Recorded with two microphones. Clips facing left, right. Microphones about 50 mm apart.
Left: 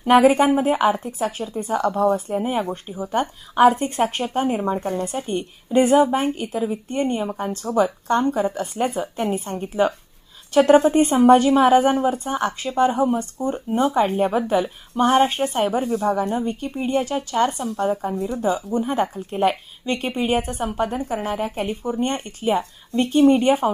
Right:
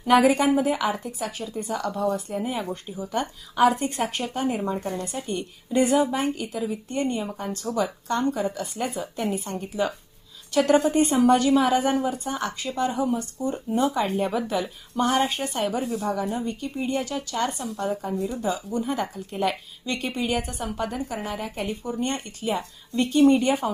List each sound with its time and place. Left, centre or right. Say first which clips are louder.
0.0 s a woman's voice: left 4 dB; left
15.8 s a woman's voice: left 5 dB; centre
16.5 s a woman's voice: left 4 dB; left
18.1 s a woman's voice: left 2 dB; centre
18.4 s a woman's voice: left 7 dB; left